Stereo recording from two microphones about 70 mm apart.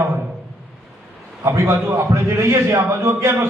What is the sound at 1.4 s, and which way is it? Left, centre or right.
A man's voice, right.